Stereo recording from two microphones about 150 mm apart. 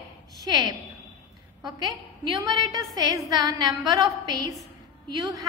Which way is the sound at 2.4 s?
25° right (ahead or behind).